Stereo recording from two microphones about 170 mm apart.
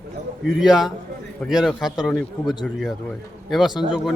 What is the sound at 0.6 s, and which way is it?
A man's voice, centre (ahead or behind).